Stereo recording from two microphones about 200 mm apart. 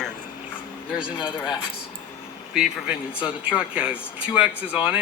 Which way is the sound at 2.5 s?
5° right (ahead or behind).